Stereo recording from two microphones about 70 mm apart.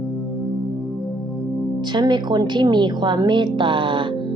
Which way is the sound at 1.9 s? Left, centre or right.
Right.